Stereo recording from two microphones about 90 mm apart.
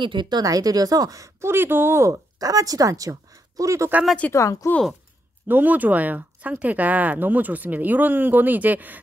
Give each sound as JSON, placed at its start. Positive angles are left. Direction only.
{"t": 0.0, "sound": "speech", "side_deg": -60}
{"t": 4.3, "sound": "speech", "side_deg": 35}
{"t": 5.5, "sound": "speech", "side_deg": -20}